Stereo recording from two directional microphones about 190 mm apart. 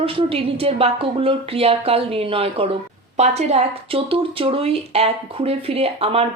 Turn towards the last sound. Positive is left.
turn(degrees=-30)  # may be behind; listen again after turning